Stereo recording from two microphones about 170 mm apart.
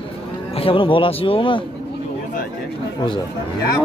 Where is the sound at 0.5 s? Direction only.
35° left (ahead or behind).